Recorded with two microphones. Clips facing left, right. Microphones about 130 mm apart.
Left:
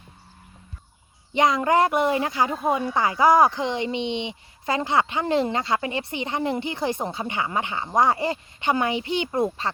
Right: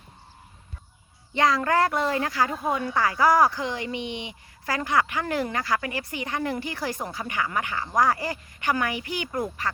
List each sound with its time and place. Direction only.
1.3 s speech: 20° left (ahead or behind)